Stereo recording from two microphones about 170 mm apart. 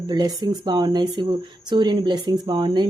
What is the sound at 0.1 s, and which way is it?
Speech, 25° right (ahead or behind).